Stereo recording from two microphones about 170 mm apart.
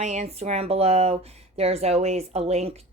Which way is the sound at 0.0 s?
40° right (ahead or behind).